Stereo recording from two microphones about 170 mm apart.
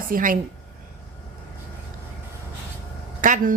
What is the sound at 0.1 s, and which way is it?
Speech, 55° right (ahead or behind).